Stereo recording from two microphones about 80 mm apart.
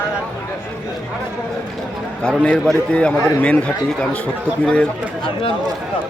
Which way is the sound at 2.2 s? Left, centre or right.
Centre.